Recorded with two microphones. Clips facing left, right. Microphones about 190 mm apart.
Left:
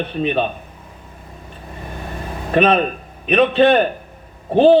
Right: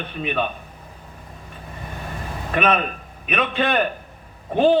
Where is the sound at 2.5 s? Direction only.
35° left (ahead or behind).